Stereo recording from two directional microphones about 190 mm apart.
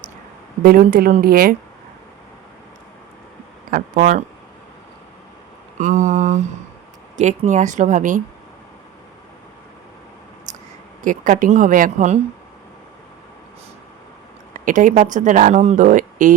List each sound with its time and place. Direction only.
0.6 s speech: 50° right (ahead or behind)
3.7 s speech: 45° right (ahead or behind)
5.8 s speech: 40° right (ahead or behind)
11.0 s speech: 45° right (ahead or behind)
14.5 s speech: 45° right (ahead or behind)